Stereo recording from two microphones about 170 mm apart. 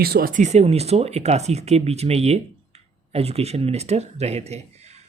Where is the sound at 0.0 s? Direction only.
65° right (ahead or behind).